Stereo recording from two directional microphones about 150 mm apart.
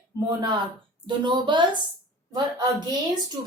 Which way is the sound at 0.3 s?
30° right (ahead or behind).